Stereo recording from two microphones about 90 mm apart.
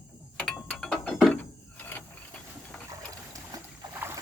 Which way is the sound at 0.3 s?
10° left (ahead or behind).